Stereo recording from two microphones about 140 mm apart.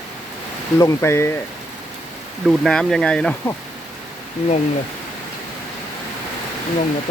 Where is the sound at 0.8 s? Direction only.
20° left (ahead or behind).